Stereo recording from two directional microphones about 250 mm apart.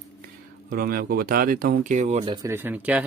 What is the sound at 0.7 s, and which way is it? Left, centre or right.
Speech, right.